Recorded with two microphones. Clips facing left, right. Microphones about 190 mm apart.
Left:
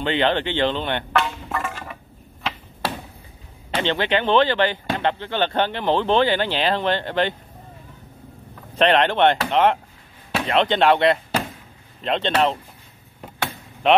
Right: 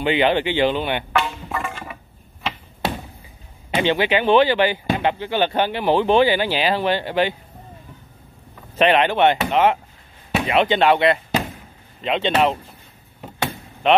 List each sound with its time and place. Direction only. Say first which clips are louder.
0.0 s speech: right 3 dB; 10° right (ahead or behind)
3.7 s speech: right 3 dB; 10° right (ahead or behind)
8.7 s speech: right 1 dB; 5° right (ahead or behind)
13.8 s speech: even; centre (ahead or behind)